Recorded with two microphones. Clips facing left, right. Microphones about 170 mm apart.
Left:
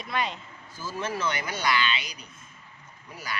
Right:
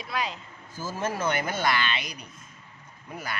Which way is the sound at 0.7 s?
45° right (ahead or behind).